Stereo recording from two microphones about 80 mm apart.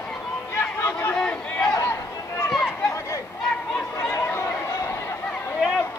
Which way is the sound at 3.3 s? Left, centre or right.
Centre.